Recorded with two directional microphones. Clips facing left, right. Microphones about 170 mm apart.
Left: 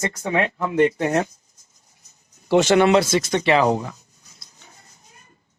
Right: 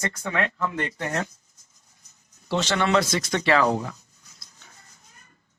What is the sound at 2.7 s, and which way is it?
Speech, 15° left (ahead or behind).